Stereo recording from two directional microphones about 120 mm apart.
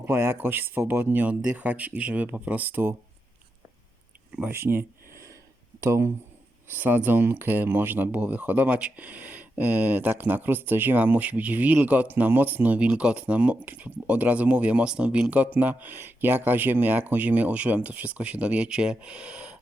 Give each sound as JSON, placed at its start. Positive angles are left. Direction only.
{"t": 0.0, "sound": "speech", "side_deg": -20}
{"t": 4.4, "sound": "speech", "side_deg": -15}